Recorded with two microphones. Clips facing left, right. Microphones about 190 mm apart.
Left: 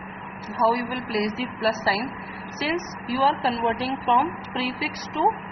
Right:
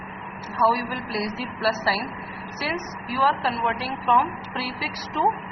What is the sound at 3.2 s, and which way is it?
A woman's voice, 25° left (ahead or behind).